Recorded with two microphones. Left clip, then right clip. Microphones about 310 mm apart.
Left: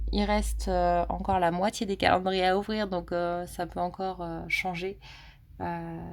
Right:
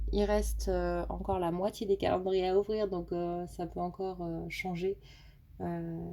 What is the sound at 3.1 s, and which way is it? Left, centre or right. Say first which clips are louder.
Speech: left 6 dB; left.